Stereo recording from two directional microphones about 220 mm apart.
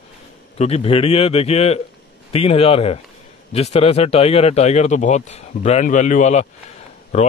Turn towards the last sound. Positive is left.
turn(degrees=30)  # may be behind; listen again after turning